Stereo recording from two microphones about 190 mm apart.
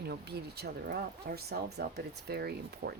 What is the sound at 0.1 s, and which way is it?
Speech, 60° right (ahead or behind).